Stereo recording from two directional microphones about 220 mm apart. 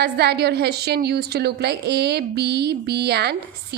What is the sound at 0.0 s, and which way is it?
A woman's voice, 50° right (ahead or behind).